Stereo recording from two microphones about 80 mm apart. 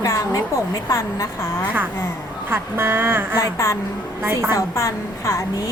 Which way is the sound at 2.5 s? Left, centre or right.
Right.